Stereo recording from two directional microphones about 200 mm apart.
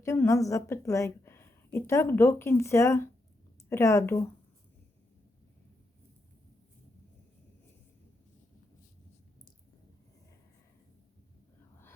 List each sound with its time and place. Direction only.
0.0 s a woman's voice: 15° left (ahead or behind)